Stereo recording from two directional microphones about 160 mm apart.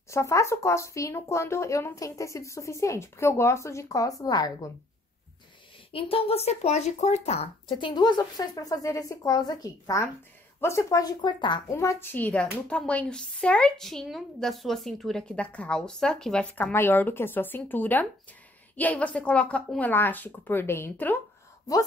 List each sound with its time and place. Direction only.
0.1 s speech: 20° left (ahead or behind)
5.9 s speech: 35° left (ahead or behind)
7.7 s speech: 25° left (ahead or behind)
11.7 s speech: 15° left (ahead or behind)